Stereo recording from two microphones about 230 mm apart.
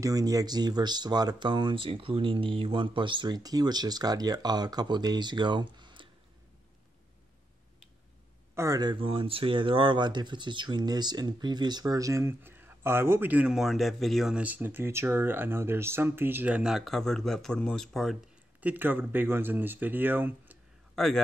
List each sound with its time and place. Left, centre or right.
0.0 s speech: centre
8.5 s speech: centre
20.9 s a man's voice: centre